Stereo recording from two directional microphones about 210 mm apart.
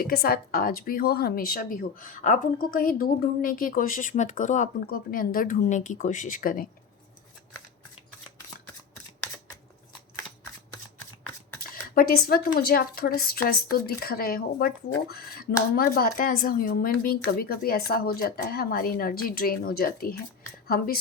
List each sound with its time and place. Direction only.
0.0 s a woman's voice: 45° left (ahead or behind)
11.7 s a sound: 45° left (ahead or behind)
12.5 s a woman's voice: 45° left (ahead or behind)